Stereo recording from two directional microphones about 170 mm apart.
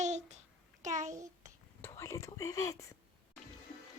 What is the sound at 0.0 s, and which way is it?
Babbling, 45° right (ahead or behind).